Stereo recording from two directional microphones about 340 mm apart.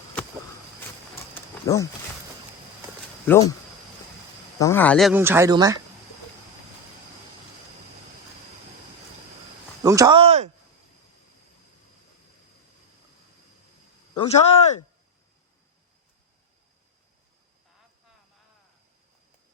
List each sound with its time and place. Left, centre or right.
1.6 s speech: centre
3.2 s speech: centre
4.5 s speech: centre
9.8 s speech: centre
14.1 s speech: centre